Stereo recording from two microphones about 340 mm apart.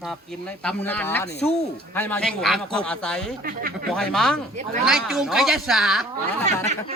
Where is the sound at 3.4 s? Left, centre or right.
Right.